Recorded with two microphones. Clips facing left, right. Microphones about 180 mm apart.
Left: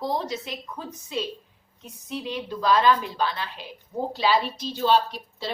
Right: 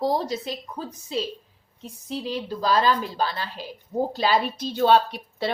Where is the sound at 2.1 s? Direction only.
35° right (ahead or behind).